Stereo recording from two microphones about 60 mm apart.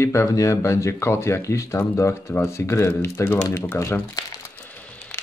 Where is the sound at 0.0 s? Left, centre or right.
Left.